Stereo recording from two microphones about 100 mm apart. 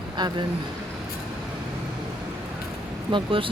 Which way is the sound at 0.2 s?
45° right (ahead or behind).